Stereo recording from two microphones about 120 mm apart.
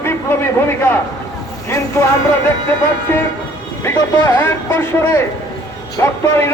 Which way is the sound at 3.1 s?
20° left (ahead or behind).